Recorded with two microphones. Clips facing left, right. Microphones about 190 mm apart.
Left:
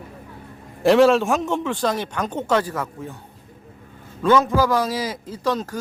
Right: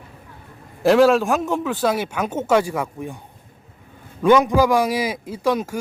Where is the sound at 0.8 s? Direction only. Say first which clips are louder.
Even; centre (ahead or behind).